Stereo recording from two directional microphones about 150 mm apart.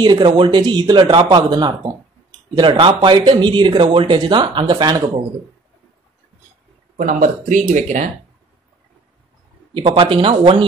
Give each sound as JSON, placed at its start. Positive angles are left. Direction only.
{"t": 0.0, "sound": "speech", "side_deg": -30}
{"t": 7.0, "sound": "speech", "side_deg": -60}
{"t": 9.8, "sound": "speech", "side_deg": -35}